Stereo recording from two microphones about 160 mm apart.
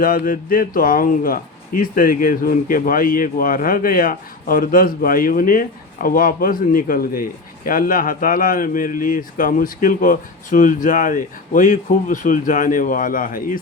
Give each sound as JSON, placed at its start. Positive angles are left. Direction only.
{"t": 0.0, "sound": "a man's voice", "side_deg": 60}